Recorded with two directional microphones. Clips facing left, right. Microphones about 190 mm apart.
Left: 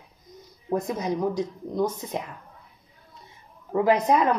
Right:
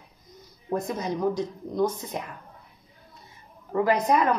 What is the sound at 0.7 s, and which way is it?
A woman's voice, 10° left (ahead or behind).